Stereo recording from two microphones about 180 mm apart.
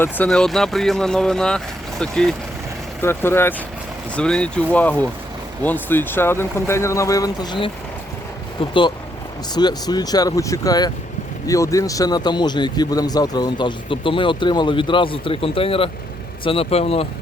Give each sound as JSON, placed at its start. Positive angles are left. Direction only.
{"t": 0.0, "sound": "speech", "side_deg": 5}
{"t": 9.6, "sound": "speech", "side_deg": 20}